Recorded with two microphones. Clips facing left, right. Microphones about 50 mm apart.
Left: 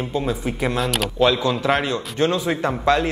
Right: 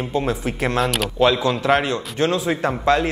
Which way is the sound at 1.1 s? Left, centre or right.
Centre.